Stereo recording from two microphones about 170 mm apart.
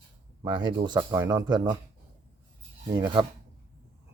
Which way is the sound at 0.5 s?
25° right (ahead or behind).